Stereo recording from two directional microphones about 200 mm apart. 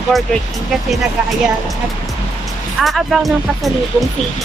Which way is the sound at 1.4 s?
Centre (ahead or behind).